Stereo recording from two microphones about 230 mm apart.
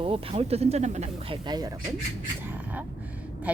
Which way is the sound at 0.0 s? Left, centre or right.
Right.